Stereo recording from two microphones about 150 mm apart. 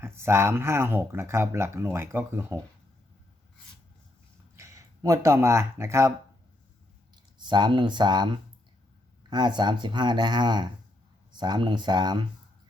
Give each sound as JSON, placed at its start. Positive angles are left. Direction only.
{"t": 0.0, "sound": "speech", "side_deg": -15}
{"t": 4.5, "sound": "speech", "side_deg": -20}
{"t": 7.3, "sound": "speech", "side_deg": -30}